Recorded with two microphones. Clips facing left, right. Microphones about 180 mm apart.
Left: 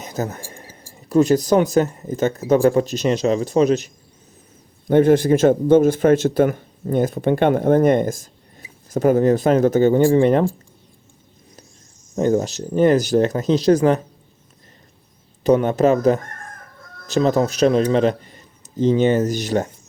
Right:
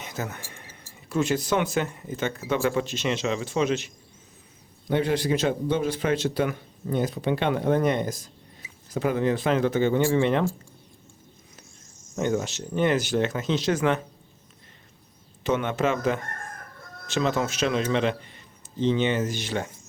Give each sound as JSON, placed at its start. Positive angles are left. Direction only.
{"t": 0.0, "sound": "a sound", "side_deg": 40}
{"t": 1.1, "sound": "speech", "side_deg": 40}
{"t": 12.1, "sound": "speech", "side_deg": 35}
{"t": 15.4, "sound": "a man's voice", "side_deg": 40}